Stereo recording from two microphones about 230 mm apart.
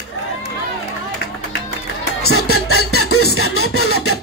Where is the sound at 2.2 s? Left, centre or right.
Left.